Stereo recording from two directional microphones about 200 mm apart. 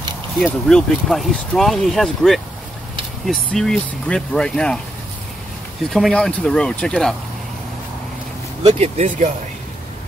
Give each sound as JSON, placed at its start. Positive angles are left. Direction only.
{"t": 0.7, "sound": "speech", "side_deg": 0}
{"t": 5.9, "sound": "speech", "side_deg": 0}
{"t": 8.6, "sound": "speech", "side_deg": -30}